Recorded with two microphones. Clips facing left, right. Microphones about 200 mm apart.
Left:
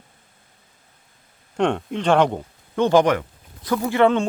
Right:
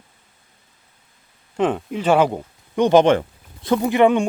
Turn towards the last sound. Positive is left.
turn(degrees=-15)  # may be behind; listen again after turning